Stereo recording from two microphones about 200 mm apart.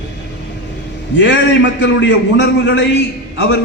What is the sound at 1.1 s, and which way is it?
A man's voice, 65° left (ahead or behind).